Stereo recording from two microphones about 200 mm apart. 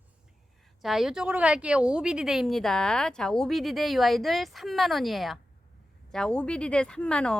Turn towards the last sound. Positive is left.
turn(degrees=5)  # may be behind; listen again after turning